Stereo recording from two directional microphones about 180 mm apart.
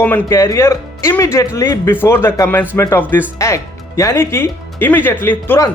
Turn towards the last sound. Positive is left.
turn(degrees=10)  # may be behind; listen again after turning